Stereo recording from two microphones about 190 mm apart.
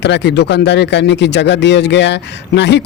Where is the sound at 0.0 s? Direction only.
65° left (ahead or behind).